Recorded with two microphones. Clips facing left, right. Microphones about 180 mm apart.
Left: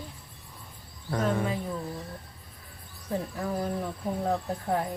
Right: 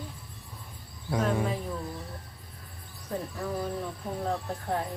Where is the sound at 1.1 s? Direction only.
10° right (ahead or behind).